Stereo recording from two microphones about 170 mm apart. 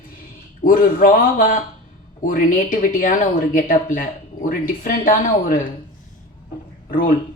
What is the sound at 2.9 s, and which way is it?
Speech, 55° left (ahead or behind).